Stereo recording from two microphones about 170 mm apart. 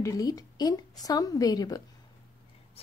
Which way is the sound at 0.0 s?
20° left (ahead or behind).